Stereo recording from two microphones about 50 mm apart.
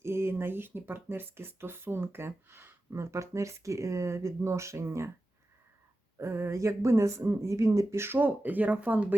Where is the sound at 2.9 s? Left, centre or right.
Right.